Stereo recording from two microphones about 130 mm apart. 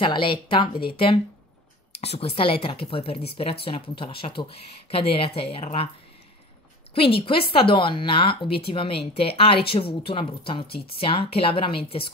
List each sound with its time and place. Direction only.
0.0 s a woman's voice: 40° left (ahead or behind)
7.0 s a woman's voice: 45° left (ahead or behind)